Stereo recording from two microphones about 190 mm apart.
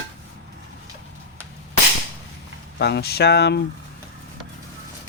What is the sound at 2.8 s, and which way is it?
Speech, 60° left (ahead or behind).